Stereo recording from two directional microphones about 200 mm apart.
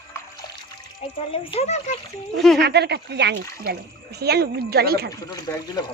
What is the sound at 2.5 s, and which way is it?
Speech, 55° right (ahead or behind).